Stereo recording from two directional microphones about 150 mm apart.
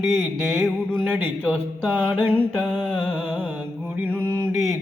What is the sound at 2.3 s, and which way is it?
Mantra, 10° left (ahead or behind).